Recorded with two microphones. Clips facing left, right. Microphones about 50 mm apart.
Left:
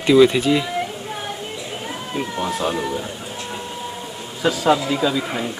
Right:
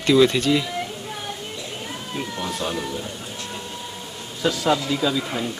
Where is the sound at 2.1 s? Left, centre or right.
Centre.